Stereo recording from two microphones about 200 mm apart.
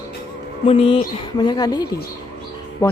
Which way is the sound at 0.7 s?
30° left (ahead or behind).